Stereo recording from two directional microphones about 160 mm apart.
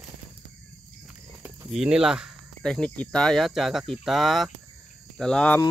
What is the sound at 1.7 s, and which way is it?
Speech, 5° right (ahead or behind).